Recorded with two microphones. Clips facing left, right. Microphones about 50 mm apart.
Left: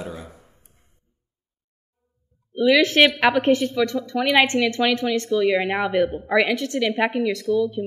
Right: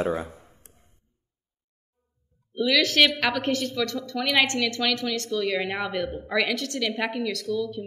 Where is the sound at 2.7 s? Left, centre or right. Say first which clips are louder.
Left 2 dB; left.